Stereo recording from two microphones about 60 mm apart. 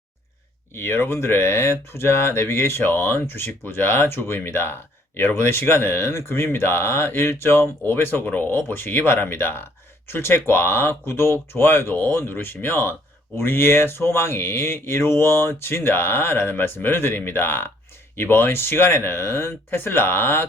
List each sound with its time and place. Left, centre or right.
0.7 s speech: left